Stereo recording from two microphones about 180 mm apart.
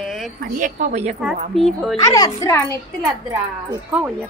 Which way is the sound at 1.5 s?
Centre (ahead or behind).